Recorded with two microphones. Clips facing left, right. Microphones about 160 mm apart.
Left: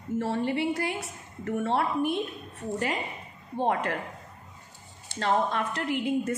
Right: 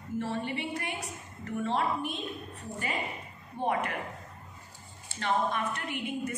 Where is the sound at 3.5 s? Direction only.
70° left (ahead or behind).